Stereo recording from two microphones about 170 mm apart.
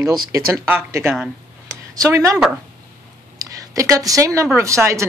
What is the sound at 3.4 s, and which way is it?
A woman's voice, 20° right (ahead or behind).